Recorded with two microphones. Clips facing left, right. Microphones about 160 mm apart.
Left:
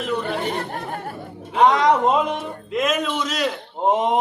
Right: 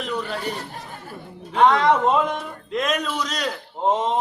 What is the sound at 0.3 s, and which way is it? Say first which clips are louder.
Speech: left 4 dB; 60° left (ahead or behind).